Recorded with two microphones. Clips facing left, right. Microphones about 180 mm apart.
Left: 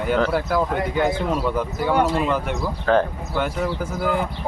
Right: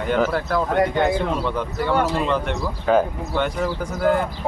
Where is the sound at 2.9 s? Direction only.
10° right (ahead or behind).